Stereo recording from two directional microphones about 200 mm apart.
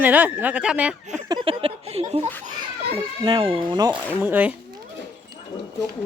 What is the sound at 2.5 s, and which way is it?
A child's voice, 25° right (ahead or behind).